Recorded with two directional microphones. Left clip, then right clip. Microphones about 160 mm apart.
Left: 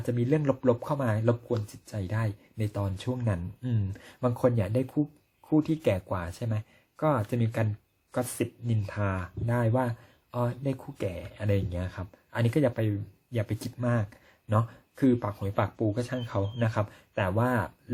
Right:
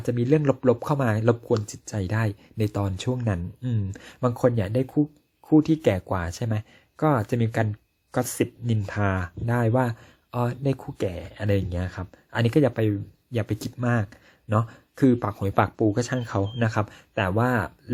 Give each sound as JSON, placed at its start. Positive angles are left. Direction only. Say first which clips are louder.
{"t": 0.0, "sound": "speech", "louder": "right 5 dB", "side_deg": -25}